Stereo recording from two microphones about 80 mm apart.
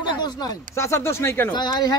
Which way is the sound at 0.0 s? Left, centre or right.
Left.